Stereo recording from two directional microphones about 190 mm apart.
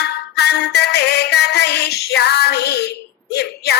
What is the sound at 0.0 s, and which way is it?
Music, 60° left (ahead or behind).